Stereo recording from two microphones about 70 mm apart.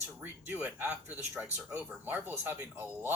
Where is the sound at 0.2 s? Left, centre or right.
Right.